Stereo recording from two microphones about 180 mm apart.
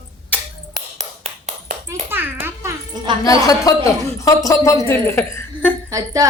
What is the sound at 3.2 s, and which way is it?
Speech, 20° left (ahead or behind).